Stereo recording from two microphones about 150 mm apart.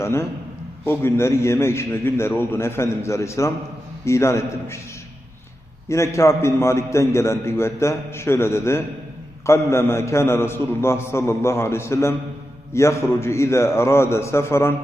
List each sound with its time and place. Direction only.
0.0 s a man's voice: 20° left (ahead or behind)
5.9 s a man's voice: 20° left (ahead or behind)